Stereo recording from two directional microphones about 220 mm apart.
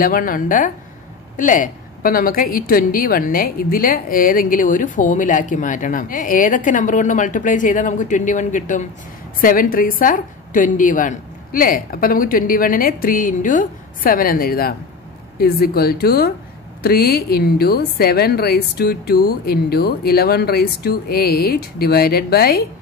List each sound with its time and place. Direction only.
0.0 s a woman's voice: 40° left (ahead or behind)